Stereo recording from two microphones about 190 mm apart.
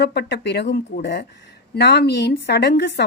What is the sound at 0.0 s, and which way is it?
A woman's voice, 60° left (ahead or behind).